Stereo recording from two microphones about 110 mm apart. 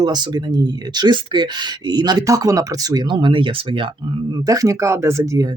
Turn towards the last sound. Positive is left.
turn(degrees=-25)  # may be behind; listen again after turning